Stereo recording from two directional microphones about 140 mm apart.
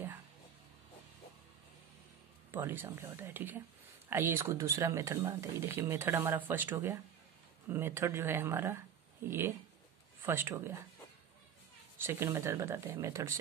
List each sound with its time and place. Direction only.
2.5 s speech: 15° right (ahead or behind)
12.0 s speech: 20° right (ahead or behind)